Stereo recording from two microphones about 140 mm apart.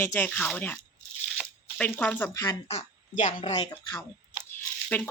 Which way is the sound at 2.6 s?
55° left (ahead or behind).